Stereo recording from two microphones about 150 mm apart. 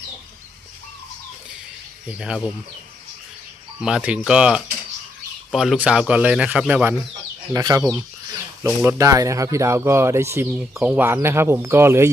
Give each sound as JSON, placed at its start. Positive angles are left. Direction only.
{"t": 2.0, "sound": "speech", "side_deg": -5}
{"t": 3.8, "sound": "speech", "side_deg": -5}
{"t": 7.5, "sound": "speech", "side_deg": -25}